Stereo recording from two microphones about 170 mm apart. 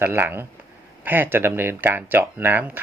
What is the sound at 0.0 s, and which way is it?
Speech, 15° right (ahead or behind).